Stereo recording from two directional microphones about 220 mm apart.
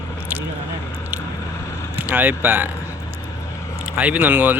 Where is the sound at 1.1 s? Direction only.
10° right (ahead or behind).